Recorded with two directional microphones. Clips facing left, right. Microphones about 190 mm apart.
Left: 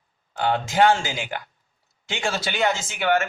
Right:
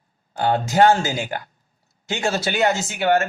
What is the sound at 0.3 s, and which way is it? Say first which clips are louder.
Speech: right 3 dB; 45° right (ahead or behind).